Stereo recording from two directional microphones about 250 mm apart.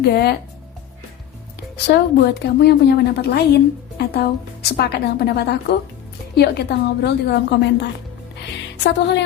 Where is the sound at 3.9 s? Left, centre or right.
Left.